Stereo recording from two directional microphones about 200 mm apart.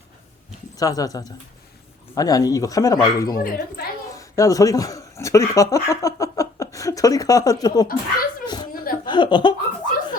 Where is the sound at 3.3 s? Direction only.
45° left (ahead or behind).